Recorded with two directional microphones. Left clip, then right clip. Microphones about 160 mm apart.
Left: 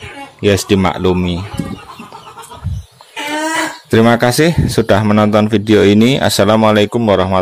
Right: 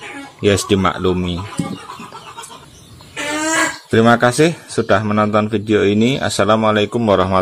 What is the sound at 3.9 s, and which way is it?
Speech, 25° left (ahead or behind).